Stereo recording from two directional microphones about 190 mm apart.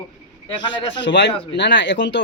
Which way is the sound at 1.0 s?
70° left (ahead or behind).